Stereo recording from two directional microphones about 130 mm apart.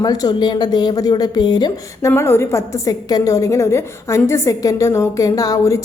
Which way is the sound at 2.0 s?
20° left (ahead or behind).